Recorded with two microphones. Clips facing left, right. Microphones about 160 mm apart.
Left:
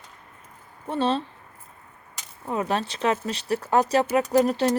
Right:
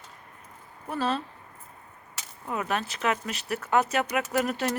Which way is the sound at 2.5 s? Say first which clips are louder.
Left 4 dB; 30° left (ahead or behind).